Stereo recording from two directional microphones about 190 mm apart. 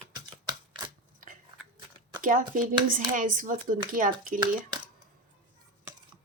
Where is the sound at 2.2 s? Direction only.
45° right (ahead or behind).